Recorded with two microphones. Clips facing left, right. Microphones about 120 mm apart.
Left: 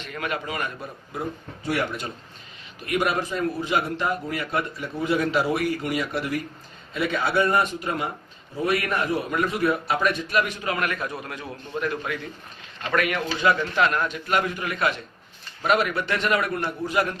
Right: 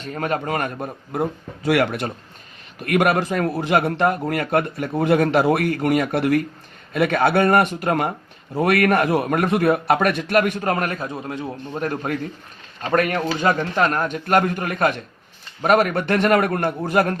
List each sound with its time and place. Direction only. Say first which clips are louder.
0.0 s a man's voice: right 6 dB; 40° right (ahead or behind)
1.6 s a man's voice: right 7 dB; 85° right; by 11.4 s 25° right (ahead or behind)
11.7 s a man's voice: right 3 dB; 40° right (ahead or behind)